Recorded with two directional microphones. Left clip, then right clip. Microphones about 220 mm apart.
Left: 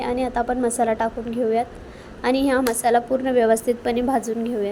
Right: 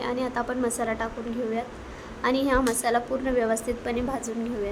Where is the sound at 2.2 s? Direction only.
15° left (ahead or behind).